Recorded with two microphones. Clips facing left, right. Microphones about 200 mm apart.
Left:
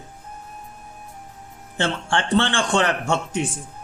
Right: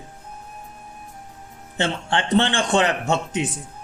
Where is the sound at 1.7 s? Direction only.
20° right (ahead or behind).